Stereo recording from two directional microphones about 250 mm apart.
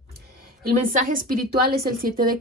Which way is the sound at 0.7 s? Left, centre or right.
Right.